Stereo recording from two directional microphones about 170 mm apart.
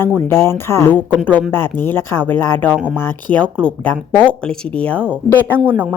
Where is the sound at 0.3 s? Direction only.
15° left (ahead or behind).